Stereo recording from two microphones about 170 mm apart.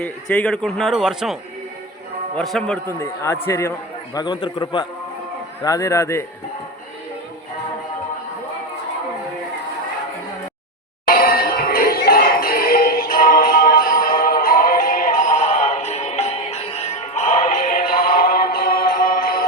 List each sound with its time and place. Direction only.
0.0 s a man's voice: 5° left (ahead or behind)
3.0 s a man's voice: 15° left (ahead or behind)
11.0 s music: 60° left (ahead or behind)